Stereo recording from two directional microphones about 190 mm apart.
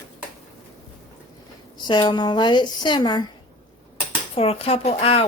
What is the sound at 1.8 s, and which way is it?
A woman's voice, 25° left (ahead or behind).